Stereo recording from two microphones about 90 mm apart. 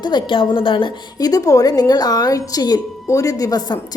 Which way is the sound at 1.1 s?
45° left (ahead or behind).